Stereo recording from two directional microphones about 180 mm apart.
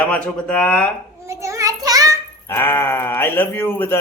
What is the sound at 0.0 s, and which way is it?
Speech, 5° left (ahead or behind).